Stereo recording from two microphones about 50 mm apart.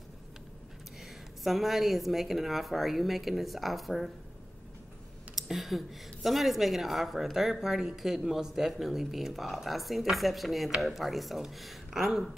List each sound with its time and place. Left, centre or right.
1.4 s speech: centre
5.3 s speech: centre